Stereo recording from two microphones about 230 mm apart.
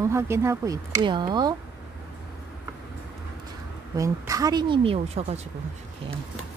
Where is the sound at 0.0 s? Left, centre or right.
Centre.